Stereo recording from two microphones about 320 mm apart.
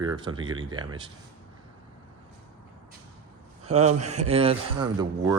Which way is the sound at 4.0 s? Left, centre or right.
Right.